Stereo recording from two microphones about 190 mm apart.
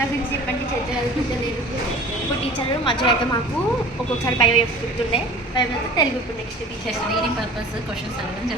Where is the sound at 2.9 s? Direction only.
25° left (ahead or behind).